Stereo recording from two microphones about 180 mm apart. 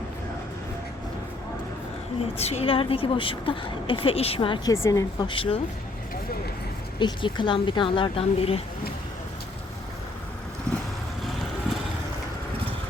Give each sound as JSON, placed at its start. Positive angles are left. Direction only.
{"t": 2.4, "sound": "a woman's voice", "side_deg": 35}
{"t": 4.7, "sound": "a woman's voice", "side_deg": 15}
{"t": 7.0, "sound": "a woman's voice", "side_deg": 25}